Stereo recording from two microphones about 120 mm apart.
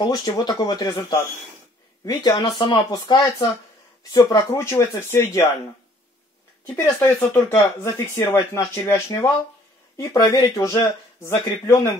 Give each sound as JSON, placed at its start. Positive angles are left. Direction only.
{"t": 0.0, "sound": "speech", "side_deg": 35}
{"t": 6.7, "sound": "speech", "side_deg": 20}